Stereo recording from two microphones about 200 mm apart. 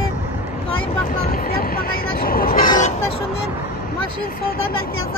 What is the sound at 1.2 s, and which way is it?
Vehicle, 45° left (ahead or behind).